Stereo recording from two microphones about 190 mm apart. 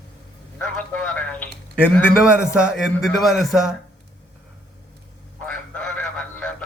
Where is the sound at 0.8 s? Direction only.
5° left (ahead or behind).